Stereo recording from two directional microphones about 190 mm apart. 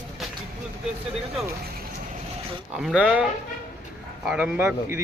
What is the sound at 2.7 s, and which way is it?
Speech, 5° right (ahead or behind).